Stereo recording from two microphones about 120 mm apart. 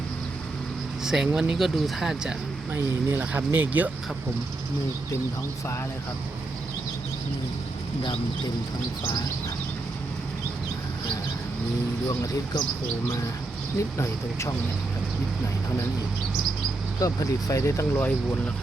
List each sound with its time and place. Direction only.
1.0 s speech: 5° right (ahead or behind)
3.1 s speech: 15° right (ahead or behind)
12.0 s speech: 30° left (ahead or behind)
14.0 s speech: 25° left (ahead or behind)
17.0 s speech: 25° left (ahead or behind)